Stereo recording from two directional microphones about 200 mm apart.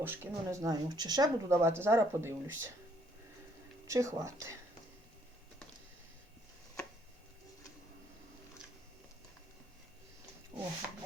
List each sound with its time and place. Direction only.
0.0 s speech: 10° right (ahead or behind)
3.8 s speech: 15° right (ahead or behind)
10.5 s a sound: 20° right (ahead or behind)